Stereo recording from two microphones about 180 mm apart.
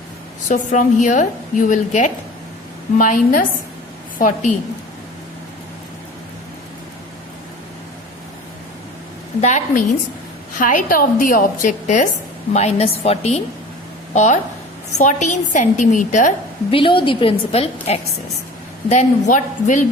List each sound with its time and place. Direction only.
0.4 s a woman's voice: 45° left (ahead or behind)
9.4 s a woman's voice: 40° left (ahead or behind)
16.7 s a woman's voice: 30° left (ahead or behind); by 19.8 s 45° left (ahead or behind)